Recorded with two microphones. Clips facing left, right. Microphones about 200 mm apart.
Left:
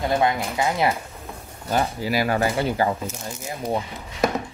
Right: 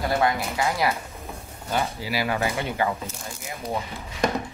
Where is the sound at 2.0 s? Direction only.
45° left (ahead or behind).